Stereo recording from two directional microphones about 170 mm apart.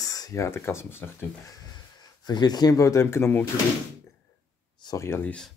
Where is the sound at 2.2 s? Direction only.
25° left (ahead or behind).